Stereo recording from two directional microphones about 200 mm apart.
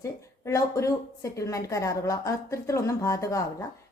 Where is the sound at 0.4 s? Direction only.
15° left (ahead or behind).